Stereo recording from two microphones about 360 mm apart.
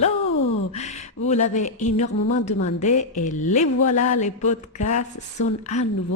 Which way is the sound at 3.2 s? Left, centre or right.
Centre.